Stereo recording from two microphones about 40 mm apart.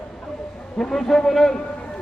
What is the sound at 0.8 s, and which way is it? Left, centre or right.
Speech, centre.